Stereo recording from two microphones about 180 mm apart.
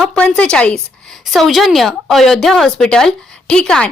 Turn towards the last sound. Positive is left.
turn(degrees=5)  # may be behind; listen again after turning